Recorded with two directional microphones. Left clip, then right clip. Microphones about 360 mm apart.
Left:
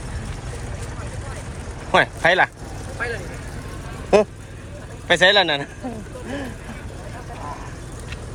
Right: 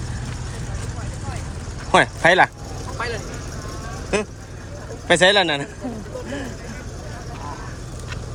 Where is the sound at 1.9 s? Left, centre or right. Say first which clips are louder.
Right 2 dB; centre.